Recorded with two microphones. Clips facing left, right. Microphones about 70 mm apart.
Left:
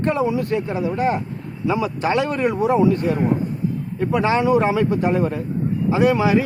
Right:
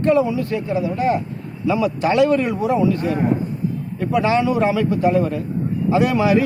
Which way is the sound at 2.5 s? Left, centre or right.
Left.